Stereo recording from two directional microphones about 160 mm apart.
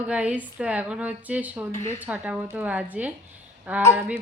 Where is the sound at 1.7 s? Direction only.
15° left (ahead or behind).